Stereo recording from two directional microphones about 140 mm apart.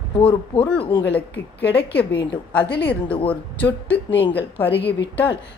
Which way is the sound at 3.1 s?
40° left (ahead or behind).